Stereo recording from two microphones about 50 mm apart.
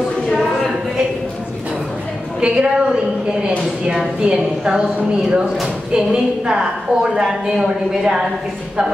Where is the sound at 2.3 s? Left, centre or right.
Centre.